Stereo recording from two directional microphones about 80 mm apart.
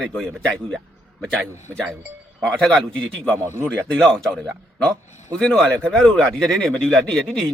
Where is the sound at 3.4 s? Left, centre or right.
Right.